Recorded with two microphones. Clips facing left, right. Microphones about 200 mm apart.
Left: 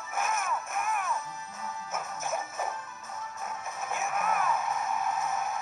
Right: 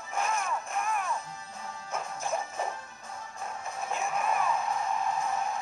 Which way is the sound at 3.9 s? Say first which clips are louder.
Even; 5° left (ahead or behind).